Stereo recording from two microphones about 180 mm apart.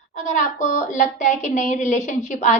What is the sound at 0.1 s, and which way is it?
Speech, 40° left (ahead or behind).